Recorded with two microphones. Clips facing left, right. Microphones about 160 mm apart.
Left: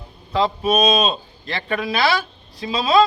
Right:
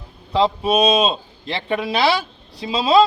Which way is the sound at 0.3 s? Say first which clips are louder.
Right 1 dB; 25° right (ahead or behind).